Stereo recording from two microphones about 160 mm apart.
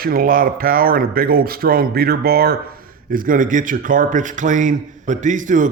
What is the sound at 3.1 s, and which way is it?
Speech, 60° right (ahead or behind).